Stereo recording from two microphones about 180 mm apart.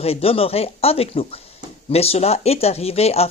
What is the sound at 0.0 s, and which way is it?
Speech, 35° left (ahead or behind).